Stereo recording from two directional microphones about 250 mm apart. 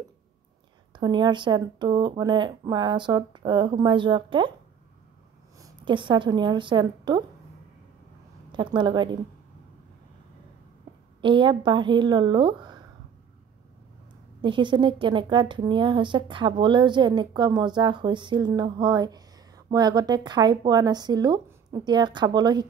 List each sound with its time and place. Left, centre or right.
0.9 s a woman's voice: centre
5.6 s a woman's voice: centre
8.5 s a woman's voice: centre
11.1 s a woman's voice: centre
14.4 s a woman's voice: centre